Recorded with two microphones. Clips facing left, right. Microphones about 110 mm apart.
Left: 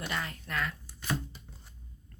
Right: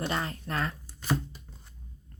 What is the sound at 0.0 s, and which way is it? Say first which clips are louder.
Speech: right 5 dB; 35° right (ahead or behind).